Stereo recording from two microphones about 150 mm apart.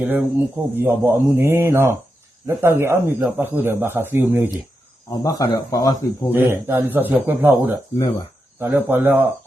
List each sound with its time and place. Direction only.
0.0 s speech: 10° right (ahead or behind)
5.2 s speech: 25° left (ahead or behind)
6.3 s speech: 15° right (ahead or behind)